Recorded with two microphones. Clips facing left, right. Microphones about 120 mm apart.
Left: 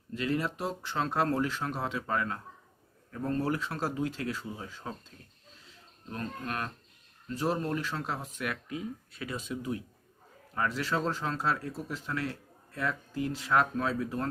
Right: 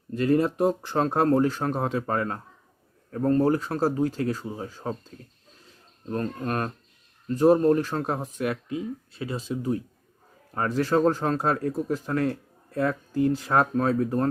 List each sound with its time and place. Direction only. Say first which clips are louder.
0.1 s speech: right 9 dB; 45° right (ahead or behind)
6.1 s speech: right 8 dB; 45° right (ahead or behind)
8.4 s speech: right 7 dB; 25° right (ahead or behind); by 14.3 s 45° right (ahead or behind)